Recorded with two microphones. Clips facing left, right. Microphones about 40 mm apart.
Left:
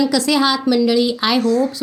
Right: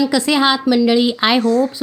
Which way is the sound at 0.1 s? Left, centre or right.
Right.